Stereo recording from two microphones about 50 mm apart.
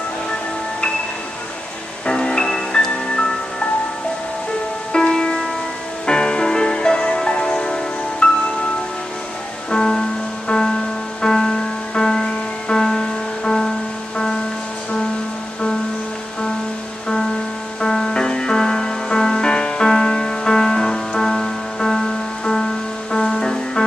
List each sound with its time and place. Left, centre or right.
0.3 s music: centre
2.0 s music: centre
4.9 s music: centre
9.7 s music: centre
11.2 s music: centre
17.7 s music: centre